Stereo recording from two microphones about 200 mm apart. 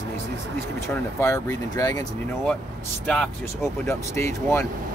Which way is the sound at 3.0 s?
5° left (ahead or behind).